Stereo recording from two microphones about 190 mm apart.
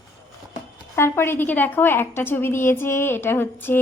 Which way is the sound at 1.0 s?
10° left (ahead or behind).